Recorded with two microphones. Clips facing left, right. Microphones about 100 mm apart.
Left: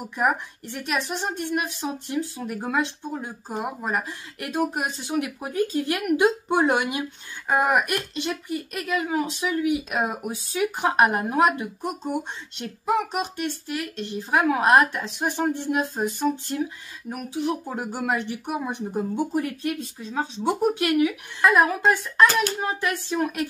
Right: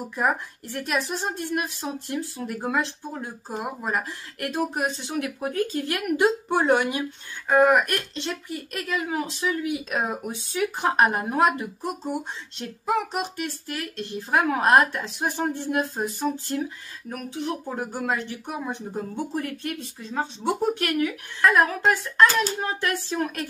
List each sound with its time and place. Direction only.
0.1 s a woman's voice: 5° left (ahead or behind)
17.1 s a woman's voice: 10° left (ahead or behind)